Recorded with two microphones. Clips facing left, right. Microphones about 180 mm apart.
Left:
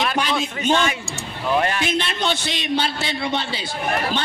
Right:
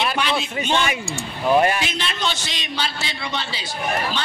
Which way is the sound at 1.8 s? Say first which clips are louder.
Left 3 dB; 55° left (ahead or behind).